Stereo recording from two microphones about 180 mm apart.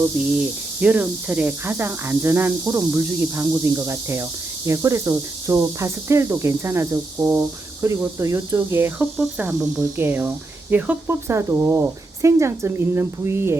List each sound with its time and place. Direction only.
0.3 s speech: 5° right (ahead or behind)